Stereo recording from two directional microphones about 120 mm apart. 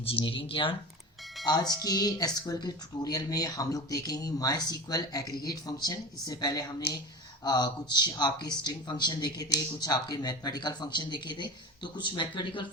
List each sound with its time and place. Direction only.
0.0 s speech: 50° left (ahead or behind)
1.5 s a woman's voice: 35° left (ahead or behind)